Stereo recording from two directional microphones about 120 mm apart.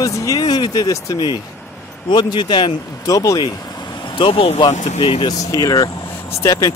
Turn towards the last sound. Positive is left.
turn(degrees=30)  # may be behind; listen again after turning